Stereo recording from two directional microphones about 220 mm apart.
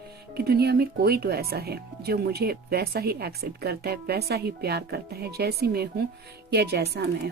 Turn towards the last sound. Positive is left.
turn(degrees=-50)  # may be behind; listen again after turning